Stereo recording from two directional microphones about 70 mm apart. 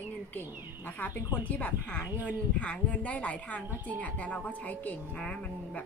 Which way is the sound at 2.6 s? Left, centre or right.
Centre.